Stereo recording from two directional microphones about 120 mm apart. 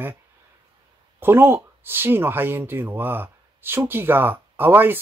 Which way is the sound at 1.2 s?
20° right (ahead or behind).